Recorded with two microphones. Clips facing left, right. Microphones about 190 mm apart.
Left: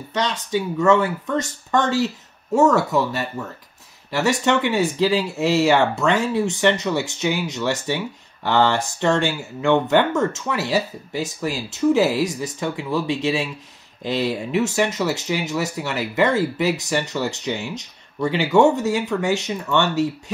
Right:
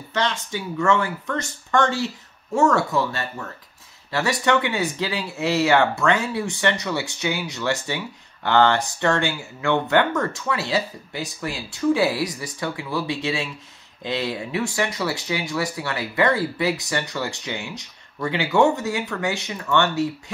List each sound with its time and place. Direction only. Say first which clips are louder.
0.1 s speech: left 3 dB; 20° left (ahead or behind)